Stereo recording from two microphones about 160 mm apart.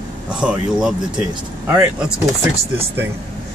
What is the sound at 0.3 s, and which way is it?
Speech, 5° right (ahead or behind).